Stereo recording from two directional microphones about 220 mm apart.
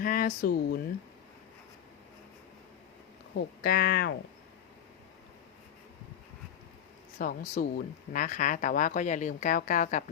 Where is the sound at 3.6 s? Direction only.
45° left (ahead or behind).